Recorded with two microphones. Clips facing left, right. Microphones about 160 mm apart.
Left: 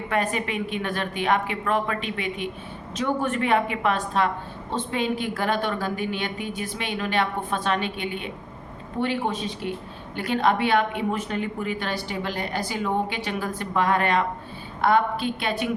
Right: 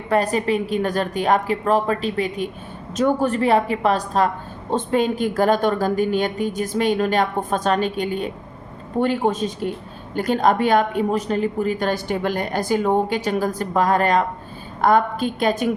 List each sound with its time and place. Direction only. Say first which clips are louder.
0.1 s a woman's voice: right 7 dB; 35° right (ahead or behind)